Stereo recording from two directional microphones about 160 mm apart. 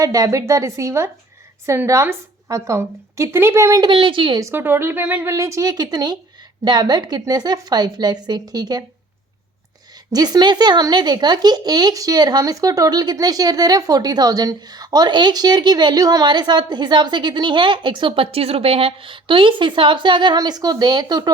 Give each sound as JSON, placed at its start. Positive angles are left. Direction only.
{"t": 0.0, "sound": "a woman's voice", "side_deg": -20}
{"t": 3.8, "sound": "speech", "side_deg": -30}
{"t": 10.1, "sound": "speech", "side_deg": -25}